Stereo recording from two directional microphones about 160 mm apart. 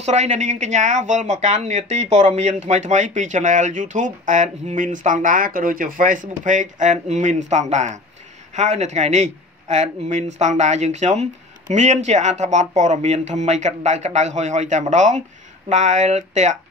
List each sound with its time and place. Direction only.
0.0 s speech: 45° right (ahead or behind)